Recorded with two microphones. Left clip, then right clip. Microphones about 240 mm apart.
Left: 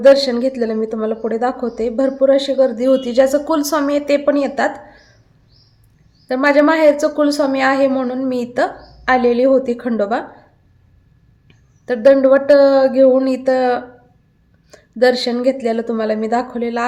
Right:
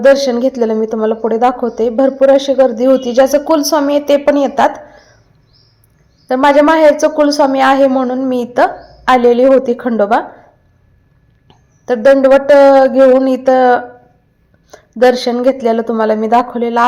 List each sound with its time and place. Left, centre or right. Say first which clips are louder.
0.0 s a woman's voice: right 2 dB; centre
6.2 s a woman's voice: right 4 dB; centre
11.4 s a woman's voice: right 5 dB; centre